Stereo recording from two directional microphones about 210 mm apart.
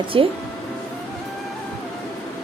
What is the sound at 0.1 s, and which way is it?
Speech, 25° right (ahead or behind).